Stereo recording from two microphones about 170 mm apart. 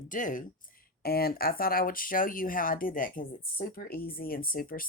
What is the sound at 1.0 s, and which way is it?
Speech, 65° left (ahead or behind).